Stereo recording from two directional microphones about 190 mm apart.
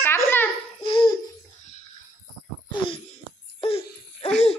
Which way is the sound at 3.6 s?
30° left (ahead or behind).